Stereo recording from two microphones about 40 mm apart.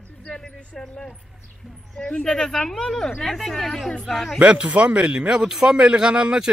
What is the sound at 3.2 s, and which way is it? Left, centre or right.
Speech, centre.